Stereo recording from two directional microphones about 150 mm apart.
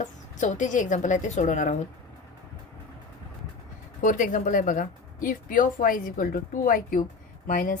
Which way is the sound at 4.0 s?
60° left (ahead or behind).